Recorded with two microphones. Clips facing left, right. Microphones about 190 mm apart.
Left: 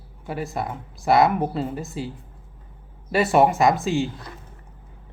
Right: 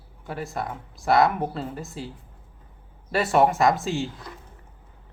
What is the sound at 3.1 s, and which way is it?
Speech, centre (ahead or behind).